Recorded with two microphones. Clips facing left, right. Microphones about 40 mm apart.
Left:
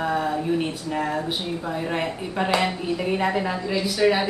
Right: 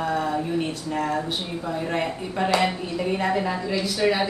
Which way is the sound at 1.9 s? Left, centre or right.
Centre.